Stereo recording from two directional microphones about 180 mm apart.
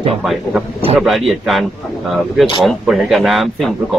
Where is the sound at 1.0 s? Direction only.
Centre (ahead or behind).